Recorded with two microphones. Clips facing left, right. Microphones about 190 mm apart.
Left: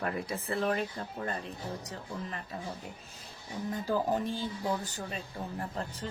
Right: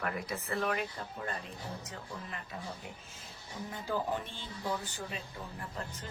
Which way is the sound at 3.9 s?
40° left (ahead or behind).